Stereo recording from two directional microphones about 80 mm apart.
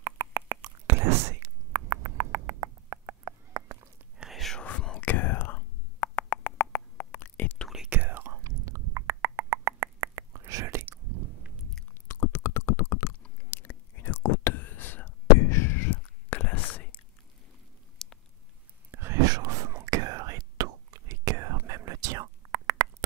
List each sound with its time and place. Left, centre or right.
0.0 s beatboxing: right
0.8 s whispering: right
1.7 s a sound: right
4.2 s whispering: centre
4.6 s whispering: centre
7.9 s whispering: right
8.5 s a sound: right
12.1 s a sound: left
13.5 s whispering: left
15.9 s whispering: left
18.0 s a sound: centre
18.9 s whispering: right
19.2 s whispering: right